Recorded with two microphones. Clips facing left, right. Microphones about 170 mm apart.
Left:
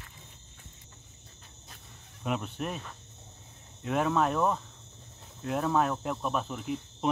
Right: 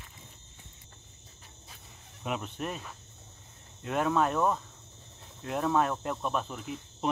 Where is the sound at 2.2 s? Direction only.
Centre (ahead or behind).